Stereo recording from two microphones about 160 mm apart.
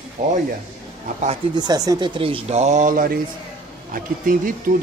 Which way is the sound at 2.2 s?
35° right (ahead or behind).